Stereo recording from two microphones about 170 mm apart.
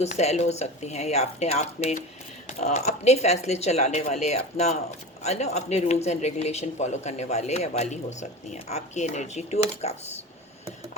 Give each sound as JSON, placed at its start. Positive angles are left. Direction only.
{"t": 0.0, "sound": "speech", "side_deg": 40}